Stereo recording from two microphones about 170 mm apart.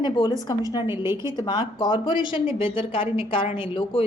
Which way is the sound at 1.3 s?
25° left (ahead or behind).